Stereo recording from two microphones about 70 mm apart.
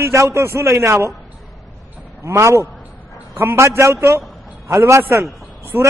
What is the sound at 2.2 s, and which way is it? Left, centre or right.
A man's voice, right.